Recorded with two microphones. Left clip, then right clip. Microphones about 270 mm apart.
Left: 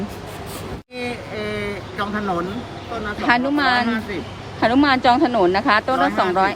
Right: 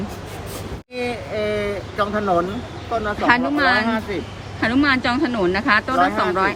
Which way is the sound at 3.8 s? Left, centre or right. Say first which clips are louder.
Right 1 dB; centre.